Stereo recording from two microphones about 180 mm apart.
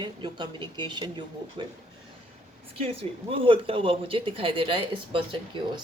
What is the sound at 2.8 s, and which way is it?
Speech, 30° right (ahead or behind).